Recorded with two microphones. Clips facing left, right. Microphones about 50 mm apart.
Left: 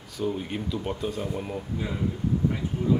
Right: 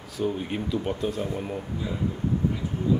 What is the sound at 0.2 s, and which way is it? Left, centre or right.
Speech, centre.